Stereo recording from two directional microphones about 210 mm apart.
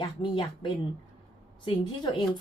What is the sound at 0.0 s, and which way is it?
A woman's voice, 25° left (ahead or behind).